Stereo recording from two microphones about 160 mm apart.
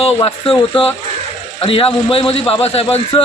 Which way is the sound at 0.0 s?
35° left (ahead or behind).